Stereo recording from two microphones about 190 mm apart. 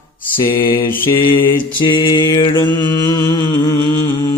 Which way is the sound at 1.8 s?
25° left (ahead or behind).